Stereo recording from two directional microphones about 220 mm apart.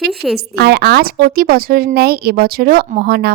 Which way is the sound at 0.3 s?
45° right (ahead or behind).